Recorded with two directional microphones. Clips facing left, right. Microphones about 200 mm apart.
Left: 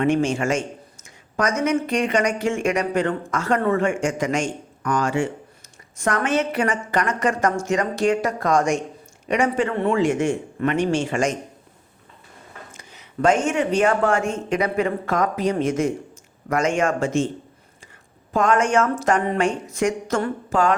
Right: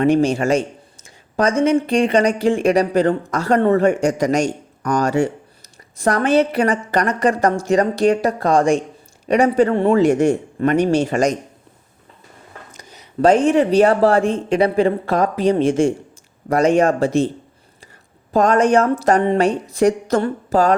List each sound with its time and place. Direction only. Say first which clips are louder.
0.0 s speech: right 5 dB; 35° right (ahead or behind)
12.7 s speech: right 5 dB; 40° right (ahead or behind)
18.3 s speech: right 5 dB; 35° right (ahead or behind)